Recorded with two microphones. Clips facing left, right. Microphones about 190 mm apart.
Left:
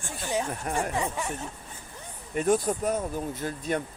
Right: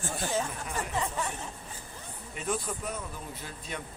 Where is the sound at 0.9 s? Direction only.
15° left (ahead or behind).